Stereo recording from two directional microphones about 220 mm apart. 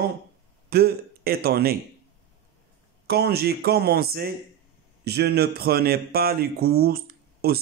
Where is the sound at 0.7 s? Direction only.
45° right (ahead or behind).